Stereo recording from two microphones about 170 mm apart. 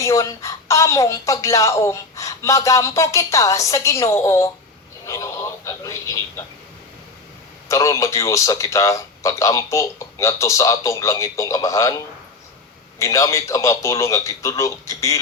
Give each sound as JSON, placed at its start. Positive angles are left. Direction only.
{"t": 0.0, "sound": "a woman's voice", "side_deg": 20}
{"t": 5.0, "sound": "a sound", "side_deg": 20}
{"t": 7.7, "sound": "a woman's voice", "side_deg": 20}